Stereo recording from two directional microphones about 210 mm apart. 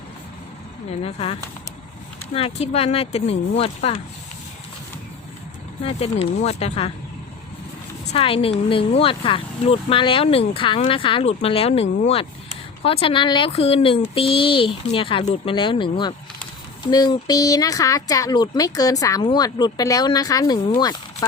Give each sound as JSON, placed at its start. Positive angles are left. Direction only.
{"t": 1.0, "sound": "speech", "side_deg": 25}
{"t": 5.8, "sound": "speech", "side_deg": 30}
{"t": 8.1, "sound": "speech", "side_deg": 25}